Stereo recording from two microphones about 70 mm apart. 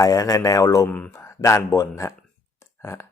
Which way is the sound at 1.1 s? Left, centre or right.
Left.